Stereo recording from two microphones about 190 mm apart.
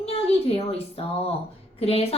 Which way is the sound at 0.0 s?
30° left (ahead or behind).